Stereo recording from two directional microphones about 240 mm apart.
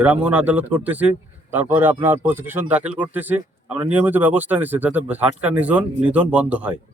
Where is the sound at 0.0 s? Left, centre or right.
Centre.